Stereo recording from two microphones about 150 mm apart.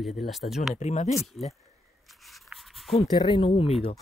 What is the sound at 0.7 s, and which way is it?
Speech, 50° left (ahead or behind).